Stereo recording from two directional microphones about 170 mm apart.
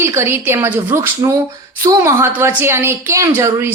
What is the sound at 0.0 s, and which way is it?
A woman's voice, 15° right (ahead or behind).